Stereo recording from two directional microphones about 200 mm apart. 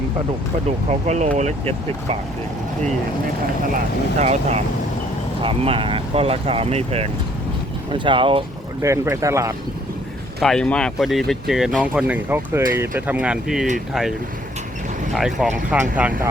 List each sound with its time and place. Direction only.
0.9 s speech: 35° right (ahead or behind)
4.2 s speech: 35° right (ahead or behind)
8.8 s speech: 15° right (ahead or behind)
10.4 s speech: 5° left (ahead or behind)
15.1 s speech: centre (ahead or behind)